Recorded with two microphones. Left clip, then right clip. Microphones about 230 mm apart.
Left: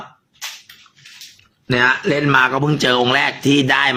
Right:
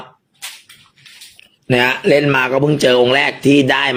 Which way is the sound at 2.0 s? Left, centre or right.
Centre.